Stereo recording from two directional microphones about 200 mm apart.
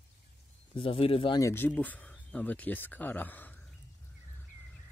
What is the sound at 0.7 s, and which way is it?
Speech, 25° left (ahead or behind).